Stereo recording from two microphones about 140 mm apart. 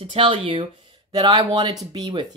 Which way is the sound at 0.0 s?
40° right (ahead or behind).